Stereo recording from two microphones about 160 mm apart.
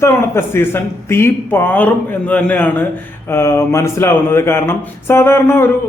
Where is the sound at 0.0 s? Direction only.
15° left (ahead or behind).